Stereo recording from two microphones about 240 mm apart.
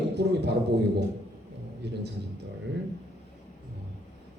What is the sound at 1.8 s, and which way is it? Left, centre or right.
Speech, right.